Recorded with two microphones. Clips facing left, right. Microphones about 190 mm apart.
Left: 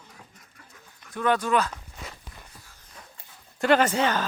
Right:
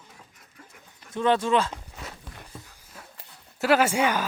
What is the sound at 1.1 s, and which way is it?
Speech, 25° right (ahead or behind).